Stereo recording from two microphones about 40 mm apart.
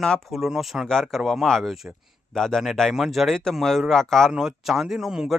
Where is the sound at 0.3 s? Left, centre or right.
Centre.